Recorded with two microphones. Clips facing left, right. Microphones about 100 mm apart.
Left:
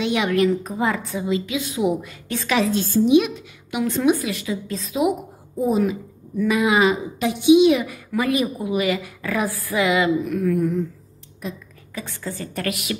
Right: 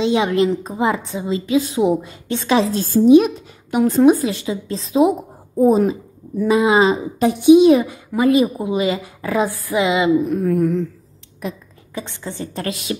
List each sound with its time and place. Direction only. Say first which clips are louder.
0.0 s a woman's voice: right 3 dB; 30° right (ahead or behind)
11.4 s a woman's voice: right 4 dB; 60° right (ahead or behind)
11.9 s a woman's voice: right 2 dB; 25° right (ahead or behind)